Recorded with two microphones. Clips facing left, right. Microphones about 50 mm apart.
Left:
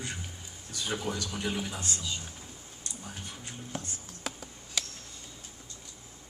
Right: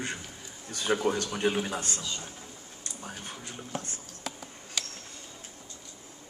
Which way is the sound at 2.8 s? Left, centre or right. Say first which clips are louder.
Right 2 dB; right.